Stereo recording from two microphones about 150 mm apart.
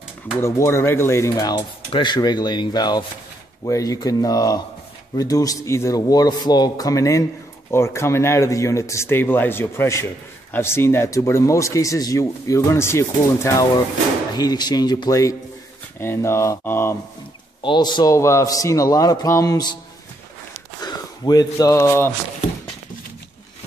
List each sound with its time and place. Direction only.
0.4 s speech: 15° left (ahead or behind)
17.6 s speech: 30° left (ahead or behind)
20.8 s speech: 25° left (ahead or behind)